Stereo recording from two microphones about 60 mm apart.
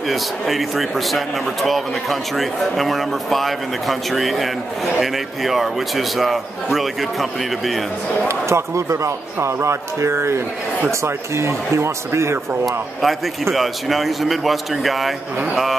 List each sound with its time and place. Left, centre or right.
0.1 s speech: centre
8.3 s speech: right
13.0 s speech: centre